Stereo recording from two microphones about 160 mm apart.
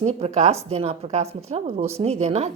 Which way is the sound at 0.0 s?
40° right (ahead or behind).